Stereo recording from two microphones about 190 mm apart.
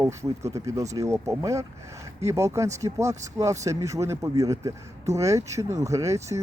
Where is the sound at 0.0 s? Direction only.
15° right (ahead or behind).